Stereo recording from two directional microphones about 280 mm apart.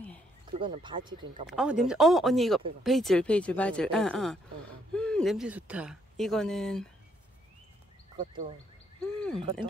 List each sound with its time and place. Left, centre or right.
0.5 s speech: centre
1.5 s speech: centre
9.0 s speech: centre